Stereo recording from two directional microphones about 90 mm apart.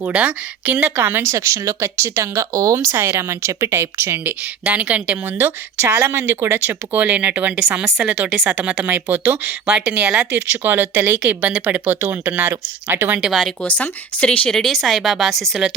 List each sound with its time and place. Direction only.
0.1 s speech: 15° right (ahead or behind); by 2.7 s 40° right (ahead or behind)
2.8 s speech: 30° right (ahead or behind)
4.6 s speech: 15° right (ahead or behind)
13.3 s speech: 5° left (ahead or behind)
13.7 s speech: 15° left (ahead or behind)
14.5 s speech: centre (ahead or behind)